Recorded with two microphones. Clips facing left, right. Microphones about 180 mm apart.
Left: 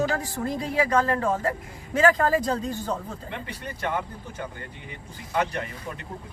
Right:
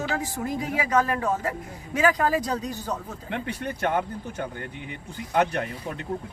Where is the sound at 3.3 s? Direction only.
60° right (ahead or behind).